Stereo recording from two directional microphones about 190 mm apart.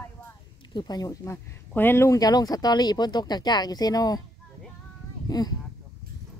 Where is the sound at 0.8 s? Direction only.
20° left (ahead or behind).